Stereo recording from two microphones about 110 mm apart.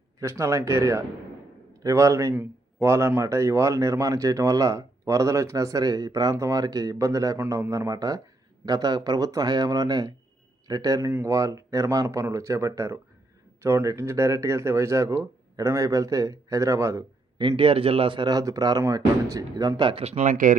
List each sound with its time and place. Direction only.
0.2 s speech: 25° right (ahead or behind)
17.6 s speech: 55° right (ahead or behind)
20.0 s speech: 75° right (ahead or behind)